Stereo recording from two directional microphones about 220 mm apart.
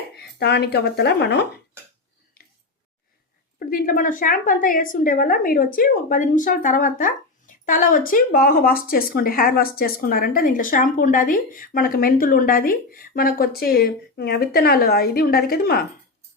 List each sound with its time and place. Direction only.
0.2 s speech: 50° left (ahead or behind)
3.7 s a woman's voice: 35° left (ahead or behind)